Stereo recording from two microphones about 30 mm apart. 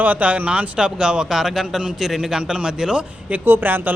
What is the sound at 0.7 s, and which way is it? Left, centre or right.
Speech, right.